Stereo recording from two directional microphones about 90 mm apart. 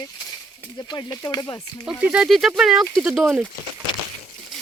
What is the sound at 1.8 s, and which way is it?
Speech, 10° right (ahead or behind).